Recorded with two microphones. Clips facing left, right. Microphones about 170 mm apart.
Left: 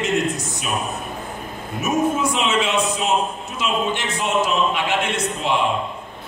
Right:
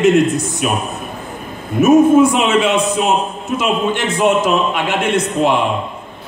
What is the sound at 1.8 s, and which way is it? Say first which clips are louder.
A man's voice: right 12 dB; 55° right (ahead or behind).